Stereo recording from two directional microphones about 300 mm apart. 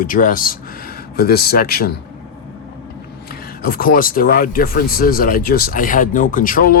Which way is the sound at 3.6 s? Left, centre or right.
Left.